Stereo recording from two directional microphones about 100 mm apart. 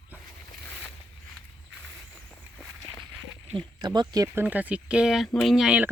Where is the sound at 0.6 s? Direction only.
15° left (ahead or behind).